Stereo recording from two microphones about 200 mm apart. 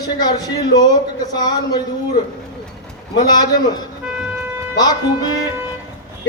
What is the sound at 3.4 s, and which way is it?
Speech, 20° left (ahead or behind).